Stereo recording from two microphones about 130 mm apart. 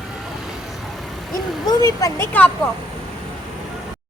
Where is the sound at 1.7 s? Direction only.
30° left (ahead or behind).